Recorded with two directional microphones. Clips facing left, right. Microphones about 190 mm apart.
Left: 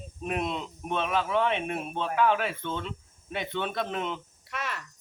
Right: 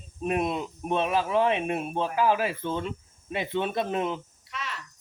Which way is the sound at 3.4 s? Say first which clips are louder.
Right 3 dB; 25° right (ahead or behind).